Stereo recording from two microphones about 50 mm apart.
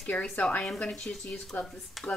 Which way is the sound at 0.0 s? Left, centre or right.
Centre.